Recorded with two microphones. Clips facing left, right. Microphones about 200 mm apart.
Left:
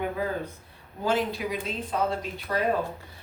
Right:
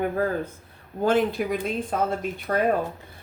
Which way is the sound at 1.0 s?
55° right (ahead or behind).